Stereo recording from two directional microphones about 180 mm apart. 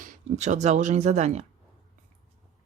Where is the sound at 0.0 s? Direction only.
45° right (ahead or behind).